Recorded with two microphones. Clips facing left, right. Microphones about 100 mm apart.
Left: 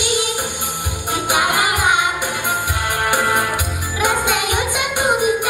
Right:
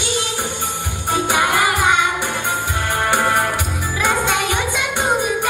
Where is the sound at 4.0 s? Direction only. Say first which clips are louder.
Left 1 dB; 15° left (ahead or behind).